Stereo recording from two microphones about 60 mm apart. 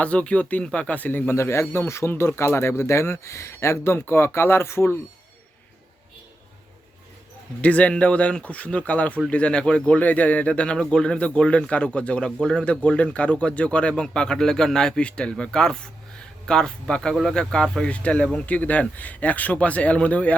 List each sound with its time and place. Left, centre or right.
0.0 s speech: left
7.6 s speech: left
17.8 s speech: left